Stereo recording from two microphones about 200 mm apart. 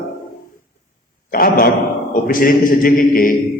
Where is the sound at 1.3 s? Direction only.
45° left (ahead or behind).